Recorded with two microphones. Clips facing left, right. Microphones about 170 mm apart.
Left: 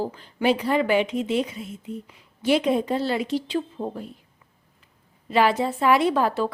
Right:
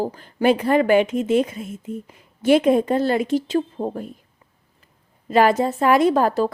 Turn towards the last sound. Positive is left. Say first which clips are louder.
# right 4 dB
turn(degrees=-40)  # may be behind; listen again after turning